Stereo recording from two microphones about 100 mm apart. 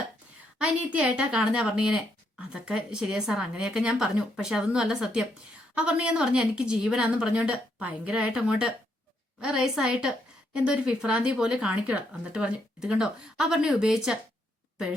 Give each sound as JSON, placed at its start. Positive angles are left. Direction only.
{"t": 0.6, "sound": "a woman's voice", "side_deg": -10}